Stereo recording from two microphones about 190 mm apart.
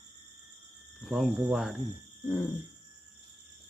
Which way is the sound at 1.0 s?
Centre (ahead or behind).